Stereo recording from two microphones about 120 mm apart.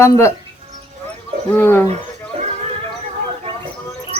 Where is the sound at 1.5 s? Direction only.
20° left (ahead or behind).